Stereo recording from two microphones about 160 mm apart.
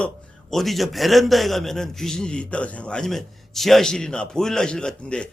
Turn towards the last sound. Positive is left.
turn(degrees=5)  # may be behind; listen again after turning